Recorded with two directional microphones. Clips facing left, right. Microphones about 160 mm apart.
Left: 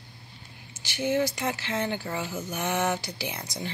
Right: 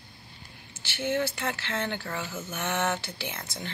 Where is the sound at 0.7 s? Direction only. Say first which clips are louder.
Left 3 dB; 15° left (ahead or behind).